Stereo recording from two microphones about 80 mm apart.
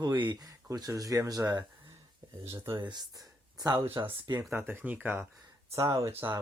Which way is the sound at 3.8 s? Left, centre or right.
Right.